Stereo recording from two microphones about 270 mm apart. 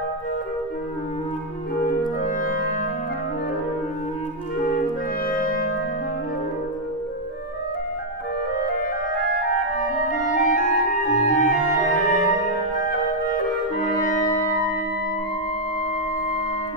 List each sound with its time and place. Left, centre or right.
1.8 s music: left
4.6 s clarinet: left
9.5 s clarinet: left
13.3 s music: left